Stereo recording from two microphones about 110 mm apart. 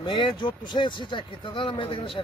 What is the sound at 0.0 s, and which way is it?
Speech, 50° left (ahead or behind).